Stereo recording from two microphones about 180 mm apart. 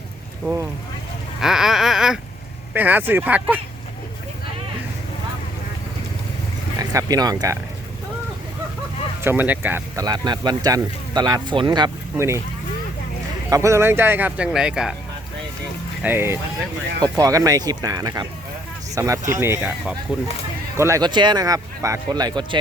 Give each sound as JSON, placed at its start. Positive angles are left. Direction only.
{"t": 0.4, "sound": "speech", "side_deg": -15}
{"t": 1.4, "sound": "a sound", "side_deg": -5}
{"t": 2.7, "sound": "speech", "side_deg": -10}
{"t": 6.7, "sound": "speech", "side_deg": -20}
{"t": 9.2, "sound": "speech", "side_deg": -10}
{"t": 13.5, "sound": "speech", "side_deg": -15}
{"t": 16.0, "sound": "speech", "side_deg": -15}
{"t": 20.7, "sound": "speech", "side_deg": -15}